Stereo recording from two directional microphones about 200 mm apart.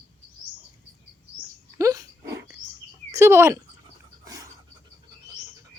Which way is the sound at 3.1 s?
15° right (ahead or behind).